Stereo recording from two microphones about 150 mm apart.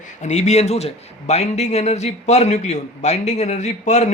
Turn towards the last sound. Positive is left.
turn(degrees=50)  # may be behind; listen again after turning